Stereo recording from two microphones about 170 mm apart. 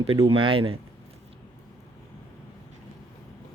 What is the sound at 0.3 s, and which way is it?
Speech, 30° right (ahead or behind).